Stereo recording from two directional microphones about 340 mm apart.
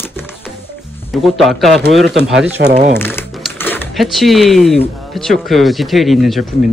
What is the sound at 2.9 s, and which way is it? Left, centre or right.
Crumpling, centre.